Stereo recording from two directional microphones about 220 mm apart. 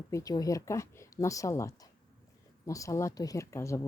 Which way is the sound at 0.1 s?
15° left (ahead or behind).